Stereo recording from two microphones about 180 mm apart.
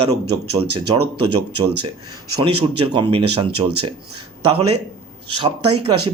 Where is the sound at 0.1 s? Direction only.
35° right (ahead or behind).